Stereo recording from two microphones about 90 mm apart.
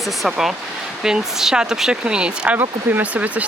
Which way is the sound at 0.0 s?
Centre (ahead or behind).